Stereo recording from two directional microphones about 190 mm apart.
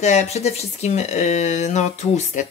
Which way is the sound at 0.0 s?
35° left (ahead or behind).